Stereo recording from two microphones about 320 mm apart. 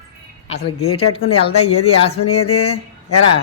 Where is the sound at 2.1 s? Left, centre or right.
Left.